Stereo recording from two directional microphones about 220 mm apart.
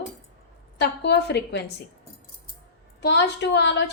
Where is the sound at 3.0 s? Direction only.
50° left (ahead or behind).